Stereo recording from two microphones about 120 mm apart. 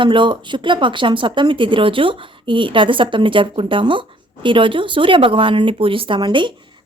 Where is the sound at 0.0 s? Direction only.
45° right (ahead or behind).